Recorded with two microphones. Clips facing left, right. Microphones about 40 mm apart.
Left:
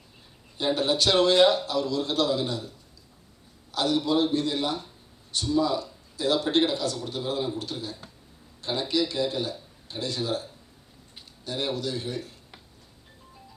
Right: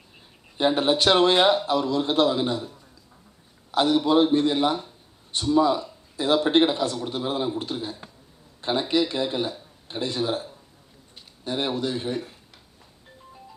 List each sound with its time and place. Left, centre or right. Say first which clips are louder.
0.5 s a man's voice: right 4 dB; right
3.7 s a man's voice: right 5 dB; right